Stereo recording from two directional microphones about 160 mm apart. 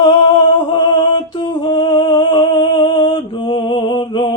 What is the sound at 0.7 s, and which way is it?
Music, 30° left (ahead or behind).